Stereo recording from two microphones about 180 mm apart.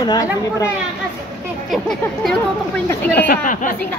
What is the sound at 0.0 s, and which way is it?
Speech, 20° left (ahead or behind).